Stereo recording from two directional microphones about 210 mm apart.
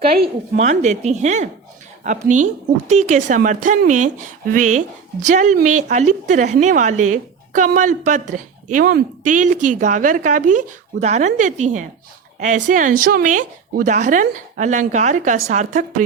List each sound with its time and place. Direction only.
0.5 s speech: 35° right (ahead or behind)